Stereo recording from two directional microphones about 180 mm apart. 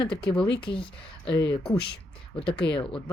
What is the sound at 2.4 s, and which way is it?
Speech, 30° left (ahead or behind).